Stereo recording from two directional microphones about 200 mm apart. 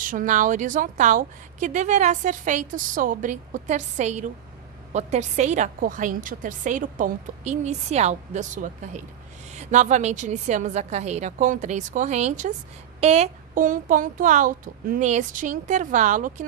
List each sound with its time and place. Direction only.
0.0 s a woman's voice: 40° right (ahead or behind)